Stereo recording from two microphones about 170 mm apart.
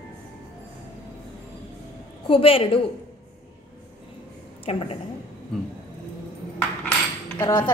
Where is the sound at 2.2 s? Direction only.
30° left (ahead or behind).